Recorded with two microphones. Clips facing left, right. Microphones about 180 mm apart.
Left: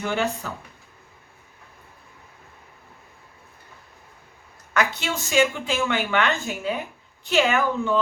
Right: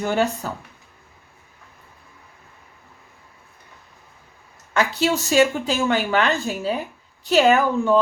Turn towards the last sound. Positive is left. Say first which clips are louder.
# right 6 dB
turn(degrees=-40)  # may be behind; listen again after turning